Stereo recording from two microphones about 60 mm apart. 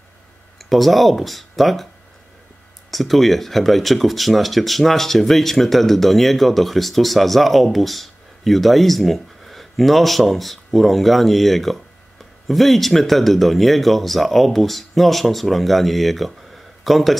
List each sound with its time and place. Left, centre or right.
0.7 s speech: centre
2.9 s speech: centre